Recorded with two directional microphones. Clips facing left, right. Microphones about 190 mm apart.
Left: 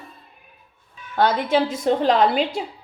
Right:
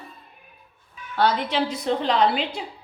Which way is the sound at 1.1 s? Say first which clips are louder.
Left 3 dB; 45° left (ahead or behind).